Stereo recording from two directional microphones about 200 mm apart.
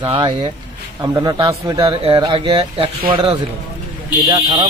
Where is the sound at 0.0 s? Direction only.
25° right (ahead or behind).